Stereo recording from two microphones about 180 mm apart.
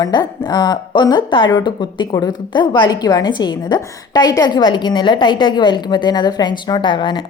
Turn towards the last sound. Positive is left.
turn(degrees=25)  # may be behind; listen again after turning